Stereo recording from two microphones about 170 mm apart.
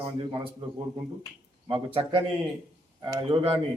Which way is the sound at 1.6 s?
30° right (ahead or behind).